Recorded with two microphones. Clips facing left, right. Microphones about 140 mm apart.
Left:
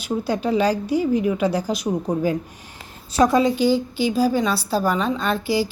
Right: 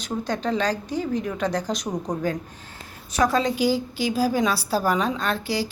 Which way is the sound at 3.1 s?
30° left (ahead or behind).